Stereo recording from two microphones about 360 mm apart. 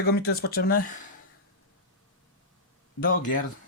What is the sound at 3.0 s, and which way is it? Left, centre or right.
Speech, left.